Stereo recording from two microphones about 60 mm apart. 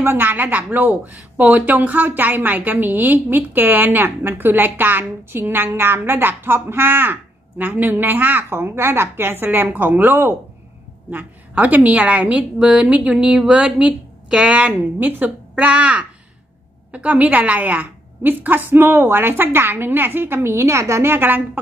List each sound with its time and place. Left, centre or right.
0.0 s a woman's voice: right
20.4 s a woman's voice: right